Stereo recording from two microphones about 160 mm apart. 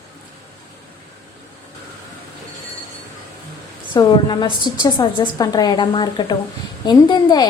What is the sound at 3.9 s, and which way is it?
A woman's voice, 30° left (ahead or behind).